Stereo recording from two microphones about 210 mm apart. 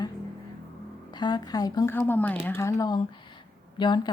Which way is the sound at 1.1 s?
20° left (ahead or behind).